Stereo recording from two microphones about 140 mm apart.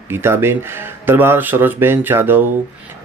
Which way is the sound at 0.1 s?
15° right (ahead or behind).